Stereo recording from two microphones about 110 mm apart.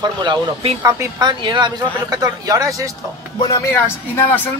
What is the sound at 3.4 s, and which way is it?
Speech, 30° left (ahead or behind).